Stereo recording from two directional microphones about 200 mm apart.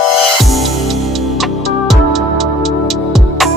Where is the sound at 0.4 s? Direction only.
Centre (ahead or behind).